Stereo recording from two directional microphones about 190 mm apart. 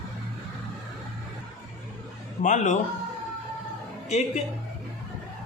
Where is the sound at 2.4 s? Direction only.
40° left (ahead or behind).